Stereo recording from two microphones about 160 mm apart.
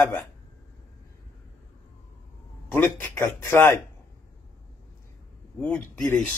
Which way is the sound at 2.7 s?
15° left (ahead or behind).